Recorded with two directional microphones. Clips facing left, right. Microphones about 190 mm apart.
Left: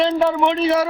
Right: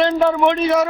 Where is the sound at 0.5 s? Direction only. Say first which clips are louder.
Right 1 dB; 30° left (ahead or behind).